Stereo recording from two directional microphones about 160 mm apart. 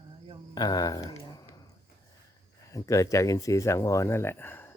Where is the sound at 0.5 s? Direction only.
25° left (ahead or behind).